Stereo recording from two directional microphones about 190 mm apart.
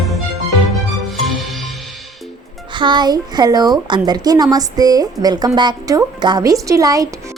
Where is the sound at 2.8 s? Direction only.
25° right (ahead or behind).